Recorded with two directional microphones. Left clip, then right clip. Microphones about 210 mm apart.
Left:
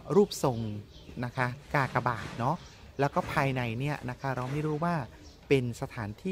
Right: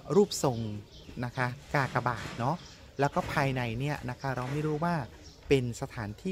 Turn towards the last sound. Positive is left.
turn(degrees=10)  # may be behind; listen again after turning